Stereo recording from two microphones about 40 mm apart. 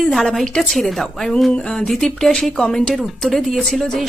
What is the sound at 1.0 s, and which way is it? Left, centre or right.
A woman's voice, centre.